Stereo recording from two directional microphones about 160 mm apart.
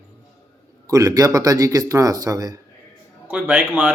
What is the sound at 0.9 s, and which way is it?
Speech, 20° right (ahead or behind).